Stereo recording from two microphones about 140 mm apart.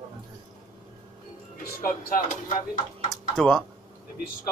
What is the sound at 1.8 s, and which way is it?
Speech, 85° left.